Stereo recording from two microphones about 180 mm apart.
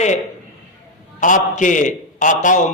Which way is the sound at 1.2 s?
45° left (ahead or behind).